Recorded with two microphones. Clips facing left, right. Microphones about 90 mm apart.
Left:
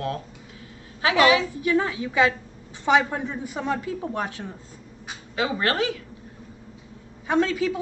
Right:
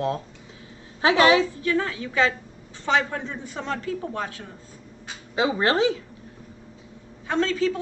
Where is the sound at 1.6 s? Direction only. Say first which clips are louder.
Left 2 dB; 15° left (ahead or behind).